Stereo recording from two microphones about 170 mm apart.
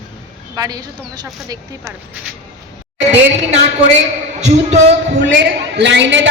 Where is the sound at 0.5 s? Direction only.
20° right (ahead or behind).